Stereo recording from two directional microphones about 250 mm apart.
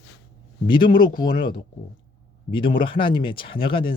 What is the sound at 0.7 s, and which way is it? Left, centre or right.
Speech, centre.